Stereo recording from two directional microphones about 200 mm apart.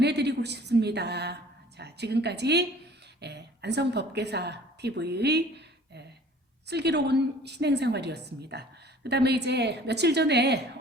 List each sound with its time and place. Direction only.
0.0 s a woman's voice: 55° right (ahead or behind)